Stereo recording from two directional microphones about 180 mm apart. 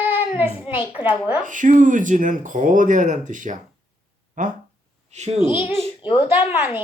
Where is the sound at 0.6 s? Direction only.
30° left (ahead or behind).